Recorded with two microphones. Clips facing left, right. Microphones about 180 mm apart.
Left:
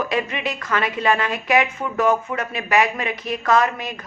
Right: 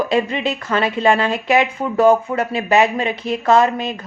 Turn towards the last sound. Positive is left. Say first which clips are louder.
# right 4 dB
turn(degrees=-30)  # may be behind; listen again after turning